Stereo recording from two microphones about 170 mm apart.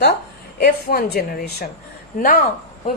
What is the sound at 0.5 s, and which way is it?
A woman's voice, 60° left (ahead or behind).